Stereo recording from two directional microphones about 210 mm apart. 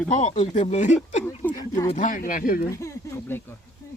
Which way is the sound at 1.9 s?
40° left (ahead or behind).